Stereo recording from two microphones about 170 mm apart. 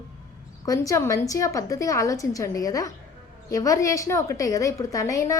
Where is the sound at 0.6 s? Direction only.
20° left (ahead or behind).